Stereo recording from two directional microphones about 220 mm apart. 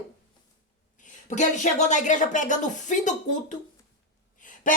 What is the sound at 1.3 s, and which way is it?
Speech, 35° left (ahead or behind).